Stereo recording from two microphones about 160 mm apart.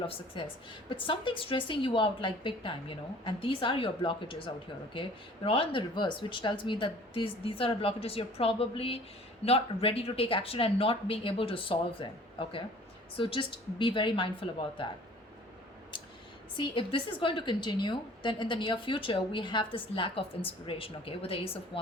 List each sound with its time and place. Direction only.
0.0 s a woman's voice: 35° left (ahead or behind)
16.6 s a woman's voice: 30° left (ahead or behind)